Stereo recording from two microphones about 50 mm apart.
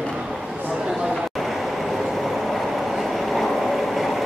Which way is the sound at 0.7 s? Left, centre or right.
Centre.